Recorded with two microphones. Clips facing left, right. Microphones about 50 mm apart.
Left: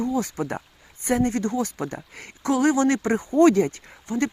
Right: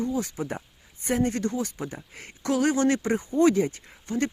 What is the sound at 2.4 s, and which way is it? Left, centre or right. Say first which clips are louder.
Speech: left 3 dB; left.